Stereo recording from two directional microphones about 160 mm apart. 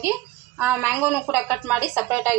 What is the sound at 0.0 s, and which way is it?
A woman's voice, 15° right (ahead or behind).